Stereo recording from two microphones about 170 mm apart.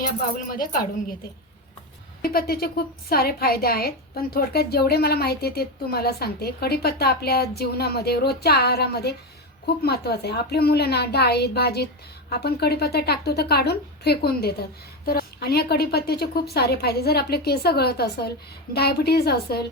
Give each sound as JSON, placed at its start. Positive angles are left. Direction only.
{"t": 0.3, "sound": "speech", "side_deg": 55}
{"t": 2.2, "sound": "a woman's voice", "side_deg": 65}